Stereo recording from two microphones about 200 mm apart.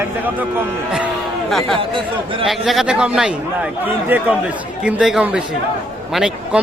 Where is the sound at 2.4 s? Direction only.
Centre (ahead or behind).